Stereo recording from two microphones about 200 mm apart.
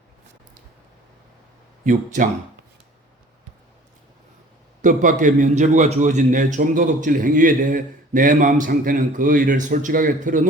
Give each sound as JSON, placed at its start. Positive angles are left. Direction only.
{"t": 1.8, "sound": "a man's voice", "side_deg": -40}
{"t": 4.8, "sound": "a man's voice", "side_deg": -40}